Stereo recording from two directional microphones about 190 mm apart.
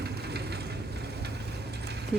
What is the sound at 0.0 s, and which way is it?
Vehicle, 60° right (ahead or behind).